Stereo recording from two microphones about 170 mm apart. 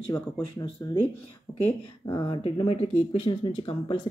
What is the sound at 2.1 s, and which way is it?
Speech, 30° left (ahead or behind).